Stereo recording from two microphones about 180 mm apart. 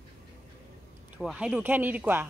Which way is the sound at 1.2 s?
5° right (ahead or behind).